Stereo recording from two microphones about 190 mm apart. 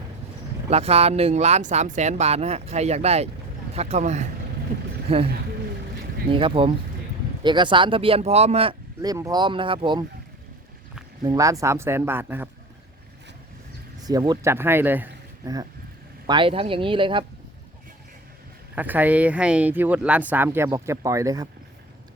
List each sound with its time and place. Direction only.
0.7 s speech: 35° right (ahead or behind)
6.3 s speech: 30° right (ahead or behind)
9.0 s speech: 15° right (ahead or behind)
11.2 s speech: 20° right (ahead or behind)
14.0 s speech: 20° right (ahead or behind)
16.2 s speech: 25° right (ahead or behind)
18.7 s speech: 10° right (ahead or behind)